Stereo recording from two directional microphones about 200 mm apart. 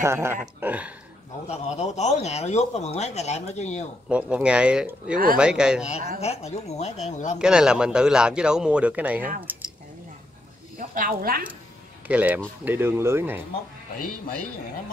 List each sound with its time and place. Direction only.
0.0 s speech: 15° right (ahead or behind)
1.5 s speech: 35° left (ahead or behind)
4.1 s a man's voice: 5° right (ahead or behind)
6.1 s speech: 30° left (ahead or behind)
7.3 s a man's voice: 5° right (ahead or behind)
10.8 s a woman's voice: 45° right (ahead or behind)
12.1 s speech: 10° right (ahead or behind)